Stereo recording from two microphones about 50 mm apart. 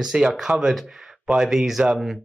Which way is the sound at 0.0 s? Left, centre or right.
Centre.